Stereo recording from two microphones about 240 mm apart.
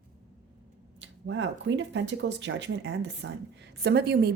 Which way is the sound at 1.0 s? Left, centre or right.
Right.